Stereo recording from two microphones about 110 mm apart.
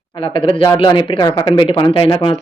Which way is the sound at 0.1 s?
50° left (ahead or behind).